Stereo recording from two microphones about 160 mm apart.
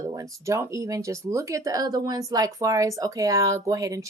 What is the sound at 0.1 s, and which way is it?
Speech, 20° right (ahead or behind).